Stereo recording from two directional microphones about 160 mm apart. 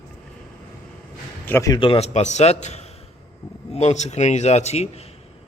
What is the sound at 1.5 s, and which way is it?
Speech, 15° left (ahead or behind).